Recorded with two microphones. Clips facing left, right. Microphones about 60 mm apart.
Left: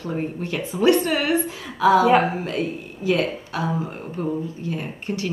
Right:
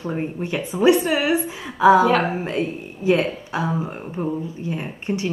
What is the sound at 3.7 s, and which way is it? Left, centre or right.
Speech, centre.